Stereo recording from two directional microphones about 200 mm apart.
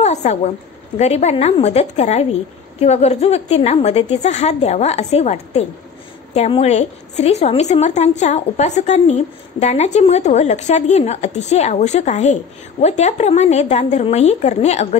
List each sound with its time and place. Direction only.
0.0 s a woman's voice: 35° left (ahead or behind)